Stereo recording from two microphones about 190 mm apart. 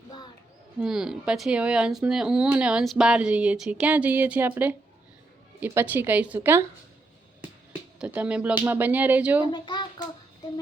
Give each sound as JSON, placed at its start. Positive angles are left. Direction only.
{"t": 0.8, "sound": "a woman's voice", "side_deg": -5}
{"t": 7.7, "sound": "speech", "side_deg": -10}
{"t": 9.5, "sound": "a child's voice", "side_deg": 20}